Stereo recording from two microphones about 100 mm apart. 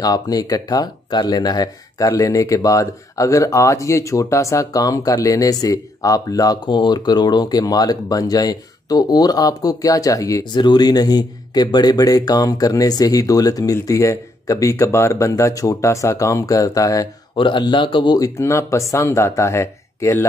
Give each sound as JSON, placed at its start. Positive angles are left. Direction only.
{"t": 0.0, "sound": "speech", "side_deg": 40}
{"t": 10.5, "sound": "speech", "side_deg": 45}
{"t": 17.4, "sound": "speech", "side_deg": 55}
{"t": 18.2, "sound": "speech", "side_deg": 30}